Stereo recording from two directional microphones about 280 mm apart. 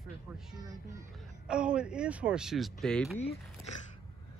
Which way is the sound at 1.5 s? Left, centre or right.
Centre.